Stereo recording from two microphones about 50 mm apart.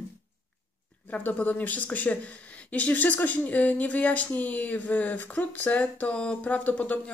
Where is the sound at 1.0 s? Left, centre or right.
Left.